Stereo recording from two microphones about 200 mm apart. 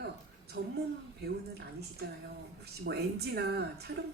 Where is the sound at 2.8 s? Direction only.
55° right (ahead or behind).